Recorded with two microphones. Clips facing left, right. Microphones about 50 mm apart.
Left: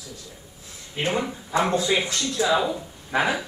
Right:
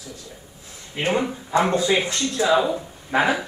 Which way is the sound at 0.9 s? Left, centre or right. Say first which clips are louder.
Right 3 dB; right.